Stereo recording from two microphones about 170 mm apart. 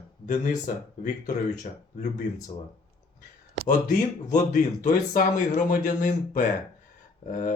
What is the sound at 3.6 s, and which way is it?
Speech, 50° left (ahead or behind).